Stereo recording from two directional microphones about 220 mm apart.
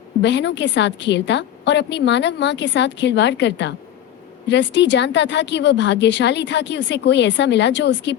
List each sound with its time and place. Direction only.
0.2 s speech: 55° left (ahead or behind)